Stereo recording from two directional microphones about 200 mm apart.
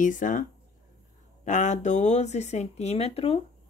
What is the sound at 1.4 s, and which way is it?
Speech, 35° left (ahead or behind).